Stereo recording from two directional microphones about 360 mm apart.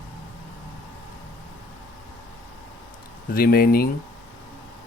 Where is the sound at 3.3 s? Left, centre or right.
Left.